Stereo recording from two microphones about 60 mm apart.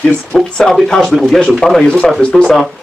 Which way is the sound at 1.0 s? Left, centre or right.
Centre.